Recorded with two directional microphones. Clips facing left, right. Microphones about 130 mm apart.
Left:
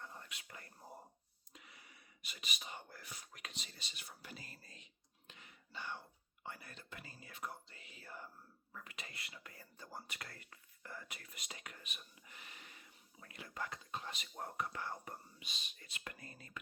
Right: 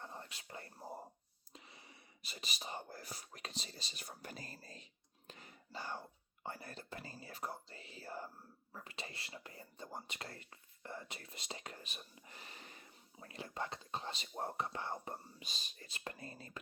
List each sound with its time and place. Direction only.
0.0 s whispering: 30° right (ahead or behind)
1.5 s speech: 30° right (ahead or behind)